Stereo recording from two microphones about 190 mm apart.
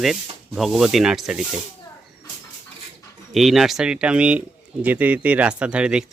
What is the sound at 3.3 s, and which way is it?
Speech, centre (ahead or behind).